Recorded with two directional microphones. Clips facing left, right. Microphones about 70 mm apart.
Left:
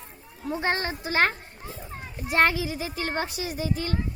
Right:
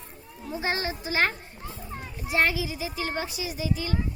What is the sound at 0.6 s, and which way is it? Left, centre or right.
A woman's voice, left.